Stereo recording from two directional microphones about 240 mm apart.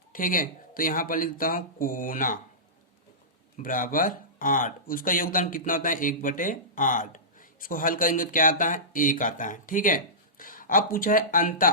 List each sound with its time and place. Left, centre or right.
0.1 s speech: left
3.6 s speech: left